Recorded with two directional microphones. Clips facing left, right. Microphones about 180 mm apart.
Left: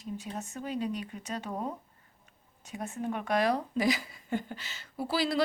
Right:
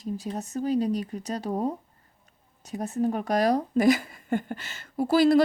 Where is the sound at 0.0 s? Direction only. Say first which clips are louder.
Right 6 dB; 35° right (ahead or behind).